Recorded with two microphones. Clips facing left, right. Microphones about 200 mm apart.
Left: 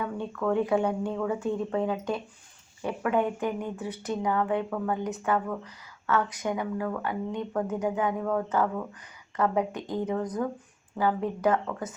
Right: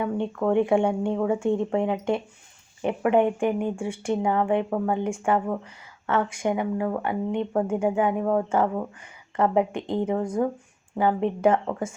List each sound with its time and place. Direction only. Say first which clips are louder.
0.0 s speech: right 5 dB; 25° right (ahead or behind)